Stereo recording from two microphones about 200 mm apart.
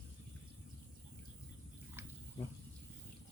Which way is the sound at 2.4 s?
25° left (ahead or behind).